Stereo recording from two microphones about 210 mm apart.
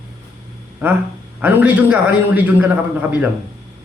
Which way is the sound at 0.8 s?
10° right (ahead or behind).